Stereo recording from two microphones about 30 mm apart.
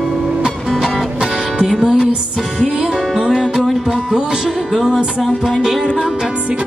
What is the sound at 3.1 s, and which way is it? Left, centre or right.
Music, centre.